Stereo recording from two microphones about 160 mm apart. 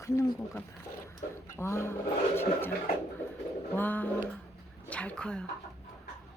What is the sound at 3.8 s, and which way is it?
Speech, 10° left (ahead or behind).